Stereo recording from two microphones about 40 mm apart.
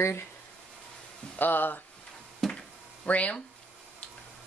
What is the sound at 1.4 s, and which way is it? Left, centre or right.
Speech, left.